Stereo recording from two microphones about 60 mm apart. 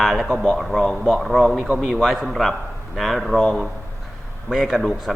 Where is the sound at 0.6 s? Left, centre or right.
Centre.